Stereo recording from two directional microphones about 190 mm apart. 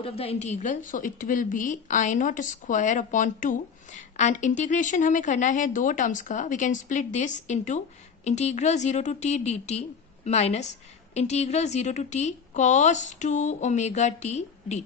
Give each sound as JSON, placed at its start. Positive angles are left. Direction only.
{"t": 0.0, "sound": "a woman's voice", "side_deg": 30}